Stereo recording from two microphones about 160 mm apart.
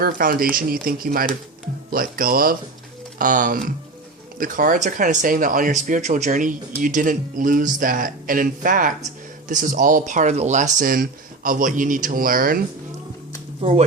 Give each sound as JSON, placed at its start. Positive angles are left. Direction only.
{"t": 0.0, "sound": "speech", "side_deg": -65}
{"t": 13.6, "sound": "speech", "side_deg": -40}